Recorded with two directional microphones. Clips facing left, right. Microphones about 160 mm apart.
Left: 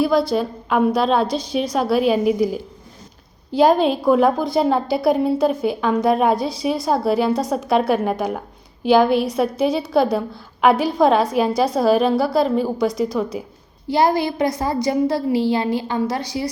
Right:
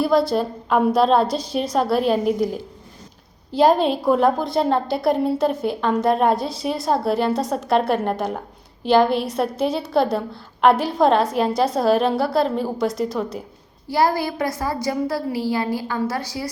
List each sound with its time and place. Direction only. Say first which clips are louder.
0.0 s a woman's voice: left 1 dB; centre (ahead or behind)
13.8 s a woman's voice: left 2 dB; 20° left (ahead or behind)